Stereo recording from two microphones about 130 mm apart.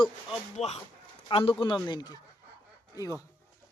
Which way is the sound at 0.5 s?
55° left (ahead or behind).